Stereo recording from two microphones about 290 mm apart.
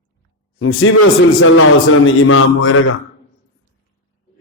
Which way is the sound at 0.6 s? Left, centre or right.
Left.